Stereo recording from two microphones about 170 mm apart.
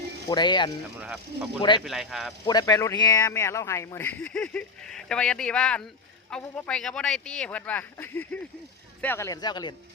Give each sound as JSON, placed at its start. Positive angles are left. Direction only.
{"t": 0.3, "sound": "speech", "side_deg": 25}
{"t": 0.9, "sound": "speech", "side_deg": -5}
{"t": 2.4, "sound": "speech", "side_deg": 25}